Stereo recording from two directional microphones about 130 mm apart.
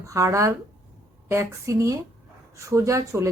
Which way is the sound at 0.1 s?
25° right (ahead or behind).